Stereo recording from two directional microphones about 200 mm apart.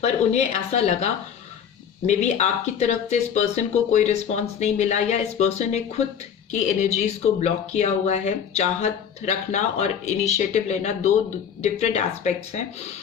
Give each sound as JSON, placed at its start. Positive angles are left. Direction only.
{"t": 0.0, "sound": "speech", "side_deg": 35}